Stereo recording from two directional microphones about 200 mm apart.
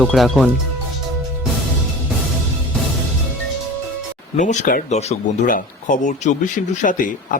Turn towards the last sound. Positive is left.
turn(degrees=40)  # may be behind; listen again after turning